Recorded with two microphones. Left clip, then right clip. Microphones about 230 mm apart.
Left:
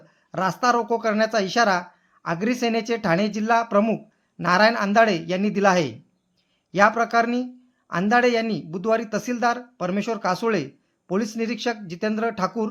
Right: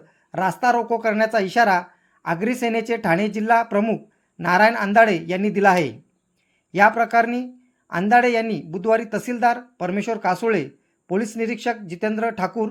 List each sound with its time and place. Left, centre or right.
0.3 s a man's voice: centre